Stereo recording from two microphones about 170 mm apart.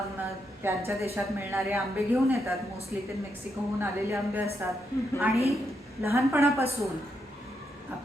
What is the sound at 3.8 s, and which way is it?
Speech, 15° right (ahead or behind).